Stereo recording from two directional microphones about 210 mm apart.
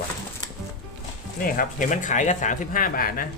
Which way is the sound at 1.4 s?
40° left (ahead or behind).